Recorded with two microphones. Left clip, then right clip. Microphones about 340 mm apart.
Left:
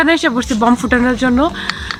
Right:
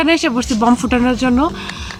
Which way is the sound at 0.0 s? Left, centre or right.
Centre.